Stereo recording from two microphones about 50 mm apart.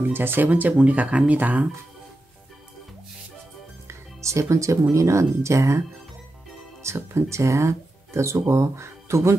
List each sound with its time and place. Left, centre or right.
0.1 s speech: right
0.5 s speech: right
3.8 s music: right
4.9 s speech: right
6.8 s speech: right